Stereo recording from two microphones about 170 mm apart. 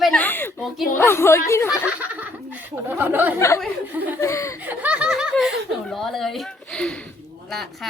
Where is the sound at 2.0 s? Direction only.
10° right (ahead or behind).